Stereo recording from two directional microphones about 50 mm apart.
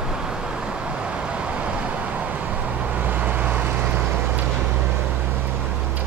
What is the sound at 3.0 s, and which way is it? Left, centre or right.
Vehicle, right.